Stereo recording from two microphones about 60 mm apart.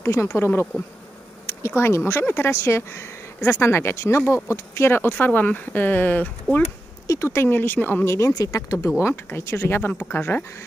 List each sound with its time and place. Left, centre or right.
0.0 s speech: left
1.6 s speech: left
5.1 s speech: left
7.1 s speech: left
8.0 s speech: left
8.4 s speech: left
9.0 s speech: left
9.9 s speech: left